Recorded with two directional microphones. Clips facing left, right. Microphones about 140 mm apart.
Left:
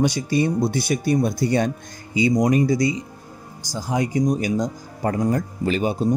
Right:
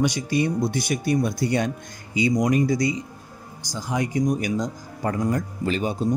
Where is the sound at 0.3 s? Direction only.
30° left (ahead or behind).